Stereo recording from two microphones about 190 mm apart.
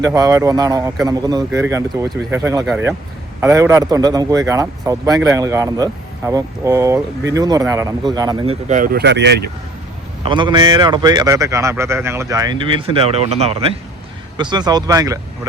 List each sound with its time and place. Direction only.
0.0 s speech: 15° right (ahead or behind)
8.6 s speech: 45° right (ahead or behind); by 9.4 s 65° right (ahead or behind)
10.2 s speech: 25° right (ahead or behind)
14.3 s speech: 25° right (ahead or behind)